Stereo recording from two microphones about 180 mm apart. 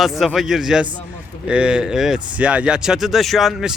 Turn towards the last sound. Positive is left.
turn(degrees=0)  # may be behind; listen again after turning